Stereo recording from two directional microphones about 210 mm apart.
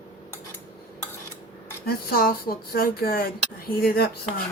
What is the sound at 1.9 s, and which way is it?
Speech, 45° left (ahead or behind).